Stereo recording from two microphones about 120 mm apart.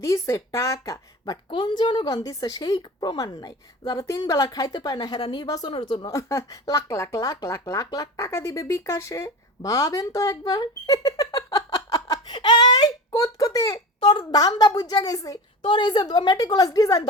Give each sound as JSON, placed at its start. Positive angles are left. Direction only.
{"t": 0.0, "sound": "speech", "side_deg": 25}
{"t": 1.2, "sound": "speech", "side_deg": 40}
{"t": 6.1, "sound": "speech", "side_deg": 25}
{"t": 14.0, "sound": "speech", "side_deg": 40}